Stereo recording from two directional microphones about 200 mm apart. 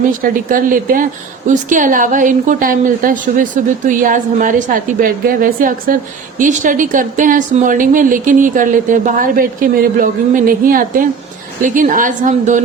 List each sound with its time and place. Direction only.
0.2 s speech: 45° right (ahead or behind)